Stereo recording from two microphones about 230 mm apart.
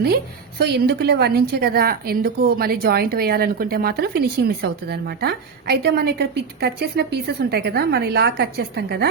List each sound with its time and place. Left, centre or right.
0.6 s a woman's voice: right